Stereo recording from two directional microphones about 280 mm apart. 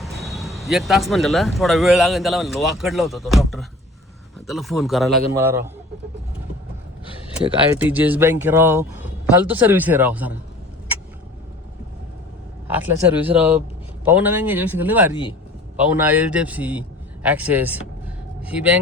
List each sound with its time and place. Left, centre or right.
0.0 s speech: centre
7.3 s speech: centre
12.7 s speech: centre
15.1 s speech: centre
16.0 s speech: centre